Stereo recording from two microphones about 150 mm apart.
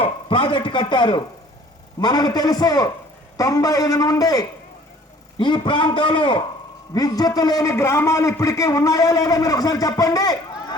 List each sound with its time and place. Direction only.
0.0 s a man's voice: 35° left (ahead or behind)